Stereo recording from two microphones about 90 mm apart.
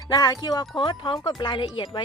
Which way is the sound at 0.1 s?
45° left (ahead or behind).